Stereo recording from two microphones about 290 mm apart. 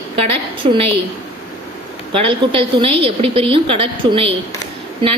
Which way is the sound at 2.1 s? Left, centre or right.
Centre.